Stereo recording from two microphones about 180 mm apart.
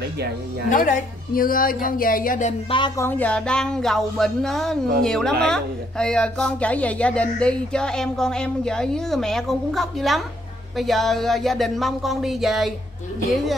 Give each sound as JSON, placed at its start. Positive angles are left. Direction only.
{"t": 0.7, "sound": "speech", "side_deg": 45}
{"t": 3.0, "sound": "speech", "side_deg": 10}